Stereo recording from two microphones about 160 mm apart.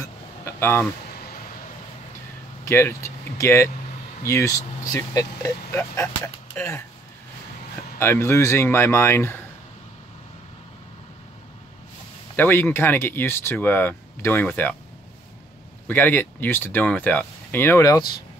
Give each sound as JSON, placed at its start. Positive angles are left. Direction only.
{"t": 0.0, "sound": "a sound", "side_deg": 15}
{"t": 2.6, "sound": "speech", "side_deg": 15}
{"t": 8.0, "sound": "speech", "side_deg": 15}
{"t": 12.4, "sound": "speech", "side_deg": 15}
{"t": 15.9, "sound": "speech", "side_deg": 10}